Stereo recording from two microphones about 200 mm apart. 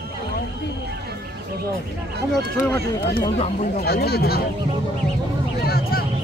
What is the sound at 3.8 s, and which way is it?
Speech, 55° left (ahead or behind).